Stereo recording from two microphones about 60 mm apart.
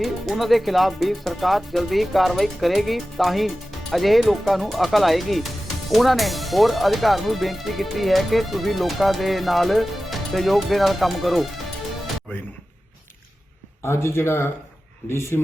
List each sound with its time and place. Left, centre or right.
0.0 s speech: centre
13.8 s speech: left